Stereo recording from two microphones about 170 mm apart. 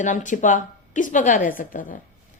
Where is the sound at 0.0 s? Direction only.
50° left (ahead or behind).